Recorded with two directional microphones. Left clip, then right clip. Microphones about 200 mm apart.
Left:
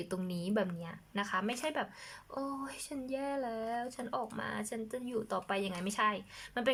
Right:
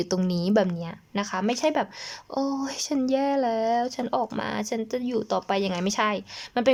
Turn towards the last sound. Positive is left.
turn(degrees=-25)  # may be behind; listen again after turning